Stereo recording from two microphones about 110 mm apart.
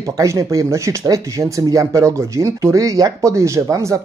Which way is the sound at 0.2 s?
30° right (ahead or behind).